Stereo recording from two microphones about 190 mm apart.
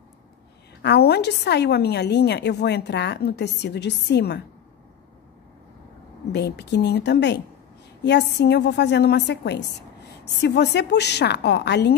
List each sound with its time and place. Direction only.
0.8 s a woman's voice: 60° left (ahead or behind)
6.3 s a woman's voice: 65° left (ahead or behind)